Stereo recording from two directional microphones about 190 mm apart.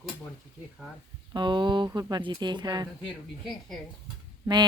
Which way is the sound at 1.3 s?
25° right (ahead or behind).